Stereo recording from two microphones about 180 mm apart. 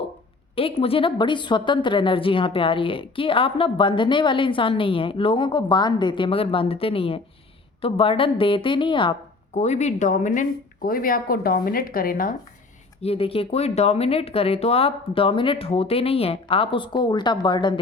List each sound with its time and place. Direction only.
0.5 s a woman's voice: 30° left (ahead or behind)
9.6 s speech: 40° left (ahead or behind)
13.0 s speech: 35° left (ahead or behind)